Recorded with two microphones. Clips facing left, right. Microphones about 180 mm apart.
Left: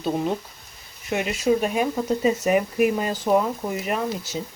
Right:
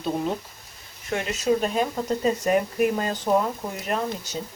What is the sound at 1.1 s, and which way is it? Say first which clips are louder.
Speech: left 2 dB; 10° left (ahead or behind).